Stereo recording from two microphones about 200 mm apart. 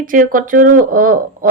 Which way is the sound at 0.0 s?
45° right (ahead or behind).